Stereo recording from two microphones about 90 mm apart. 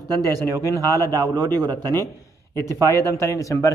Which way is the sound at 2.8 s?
35° left (ahead or behind).